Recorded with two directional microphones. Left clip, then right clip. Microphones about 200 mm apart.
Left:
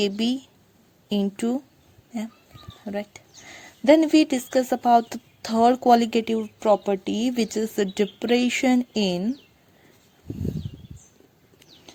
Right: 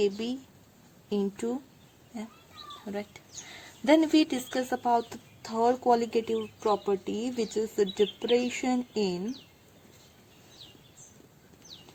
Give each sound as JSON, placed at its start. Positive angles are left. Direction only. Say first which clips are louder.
{"t": 0.0, "sound": "speech", "louder": "left 4 dB", "side_deg": 45}